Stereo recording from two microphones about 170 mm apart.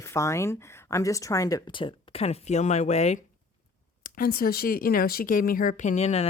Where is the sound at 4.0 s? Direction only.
60° left (ahead or behind).